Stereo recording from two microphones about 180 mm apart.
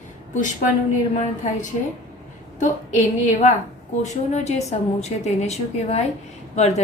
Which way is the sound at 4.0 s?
40° left (ahead or behind).